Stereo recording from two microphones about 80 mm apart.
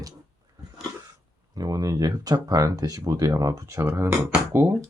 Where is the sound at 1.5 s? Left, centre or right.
Right.